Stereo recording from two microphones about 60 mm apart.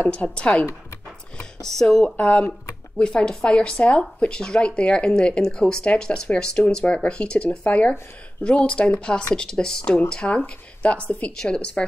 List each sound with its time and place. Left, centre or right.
0.1 s a woman's voice: centre
1.6 s speech: centre
2.1 s a woman's voice: left